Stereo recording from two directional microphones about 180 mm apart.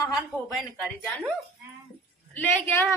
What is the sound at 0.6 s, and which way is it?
Speech, centre (ahead or behind).